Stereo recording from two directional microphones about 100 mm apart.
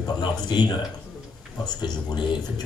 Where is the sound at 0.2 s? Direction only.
45° left (ahead or behind).